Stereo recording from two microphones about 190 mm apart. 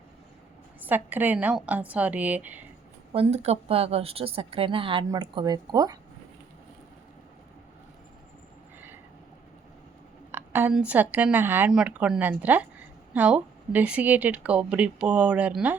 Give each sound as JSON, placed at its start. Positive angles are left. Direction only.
{"t": 0.9, "sound": "speech", "side_deg": -10}
{"t": 3.1, "sound": "a woman's voice", "side_deg": -30}
{"t": 10.3, "sound": "speech", "side_deg": -10}